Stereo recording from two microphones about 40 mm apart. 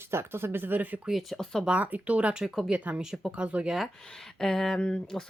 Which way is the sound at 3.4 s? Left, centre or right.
Right.